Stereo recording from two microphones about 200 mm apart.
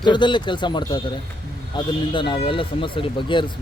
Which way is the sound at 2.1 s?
25° left (ahead or behind).